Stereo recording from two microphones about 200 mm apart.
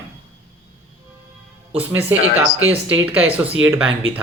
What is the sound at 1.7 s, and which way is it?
Speech, 10° right (ahead or behind).